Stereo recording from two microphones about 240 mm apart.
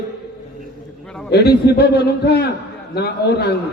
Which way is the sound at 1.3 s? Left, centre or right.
Left.